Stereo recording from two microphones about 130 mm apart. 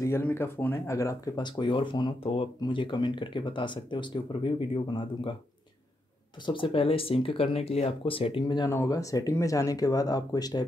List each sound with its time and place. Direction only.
0.0 s speech: 20° left (ahead or behind); by 5.3 s 40° left (ahead or behind)
6.4 s speech: 40° left (ahead or behind)